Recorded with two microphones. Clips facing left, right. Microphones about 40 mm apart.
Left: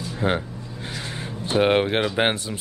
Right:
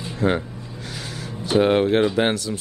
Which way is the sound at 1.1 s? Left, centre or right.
Left.